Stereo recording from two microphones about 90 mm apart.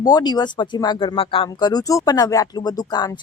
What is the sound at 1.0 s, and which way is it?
Speech, 75° left (ahead or behind).